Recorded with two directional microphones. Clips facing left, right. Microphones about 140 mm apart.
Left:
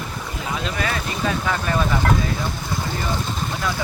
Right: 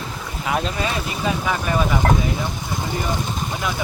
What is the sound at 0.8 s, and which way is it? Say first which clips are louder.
Speech: right 1 dB; 15° right (ahead or behind).